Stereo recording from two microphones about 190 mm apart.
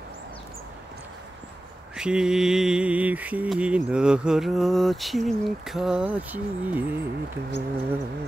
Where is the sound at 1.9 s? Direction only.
5° right (ahead or behind).